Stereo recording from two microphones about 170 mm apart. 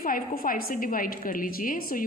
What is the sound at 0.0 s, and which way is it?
A woman's voice, 55° left (ahead or behind).